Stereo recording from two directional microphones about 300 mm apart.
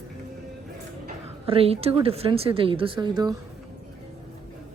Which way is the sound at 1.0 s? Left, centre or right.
Centre.